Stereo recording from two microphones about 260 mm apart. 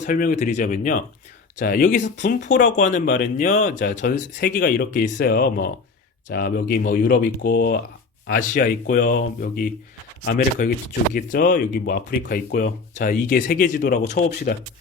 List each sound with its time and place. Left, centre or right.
0.0 s speech: left